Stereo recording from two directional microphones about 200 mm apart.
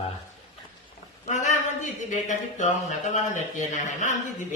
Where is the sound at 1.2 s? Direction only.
35° left (ahead or behind).